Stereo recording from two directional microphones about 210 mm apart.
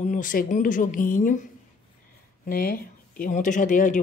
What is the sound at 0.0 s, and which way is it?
Speech, 40° left (ahead or behind).